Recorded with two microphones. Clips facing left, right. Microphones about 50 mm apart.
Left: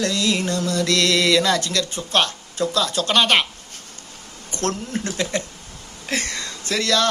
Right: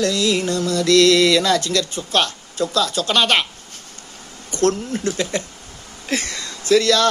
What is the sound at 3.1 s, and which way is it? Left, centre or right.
Speech, centre.